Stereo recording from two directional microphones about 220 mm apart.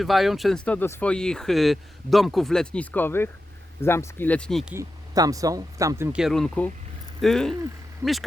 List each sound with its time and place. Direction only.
0.0 s speech: centre (ahead or behind)
4.7 s speech: 15° right (ahead or behind)
6.2 s speech: centre (ahead or behind)